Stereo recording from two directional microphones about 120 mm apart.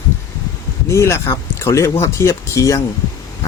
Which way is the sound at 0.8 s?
25° left (ahead or behind).